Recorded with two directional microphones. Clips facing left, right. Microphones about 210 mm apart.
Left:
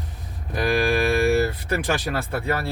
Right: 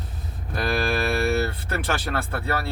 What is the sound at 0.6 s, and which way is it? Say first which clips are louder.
Speech: left 3 dB; 15° left (ahead or behind).